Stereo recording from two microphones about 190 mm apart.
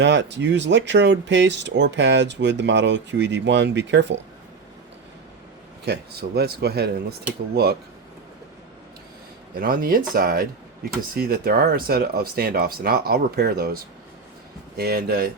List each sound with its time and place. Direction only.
0.0 s speech: 70° right (ahead or behind)
5.8 s speech: 55° right (ahead or behind)
9.6 s speech: 50° right (ahead or behind)
14.8 s speech: 55° right (ahead or behind)